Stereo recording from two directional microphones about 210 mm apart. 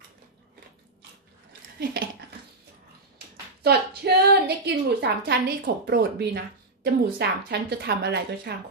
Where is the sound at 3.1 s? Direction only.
50° right (ahead or behind).